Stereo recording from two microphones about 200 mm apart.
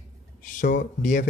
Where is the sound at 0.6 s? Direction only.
40° left (ahead or behind).